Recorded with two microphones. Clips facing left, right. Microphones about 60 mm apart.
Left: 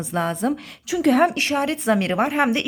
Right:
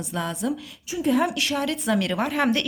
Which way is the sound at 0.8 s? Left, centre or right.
Left.